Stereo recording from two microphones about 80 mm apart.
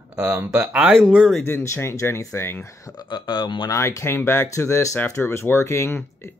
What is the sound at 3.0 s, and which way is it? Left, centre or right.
Speech, left.